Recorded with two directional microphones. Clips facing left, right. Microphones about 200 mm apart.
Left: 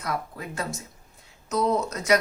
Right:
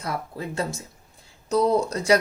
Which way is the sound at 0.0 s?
30° right (ahead or behind).